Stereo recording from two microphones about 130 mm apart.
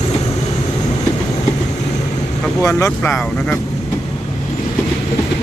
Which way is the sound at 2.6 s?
25° left (ahead or behind).